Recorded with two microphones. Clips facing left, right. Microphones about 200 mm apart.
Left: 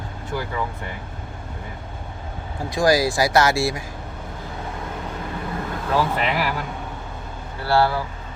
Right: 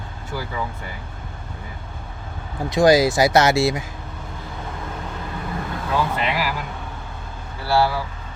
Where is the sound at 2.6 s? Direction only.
20° right (ahead or behind).